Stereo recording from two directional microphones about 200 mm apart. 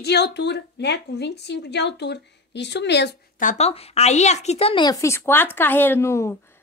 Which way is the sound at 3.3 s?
35° left (ahead or behind).